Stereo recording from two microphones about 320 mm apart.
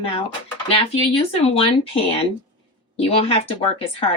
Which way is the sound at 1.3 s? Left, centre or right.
Centre.